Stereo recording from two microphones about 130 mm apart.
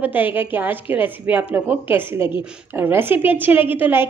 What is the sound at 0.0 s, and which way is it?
A woman's voice, 15° right (ahead or behind).